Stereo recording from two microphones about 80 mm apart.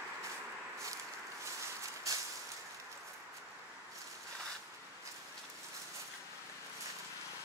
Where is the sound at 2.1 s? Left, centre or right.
Right.